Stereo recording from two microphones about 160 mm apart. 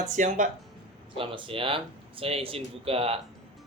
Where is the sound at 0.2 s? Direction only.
50° right (ahead or behind).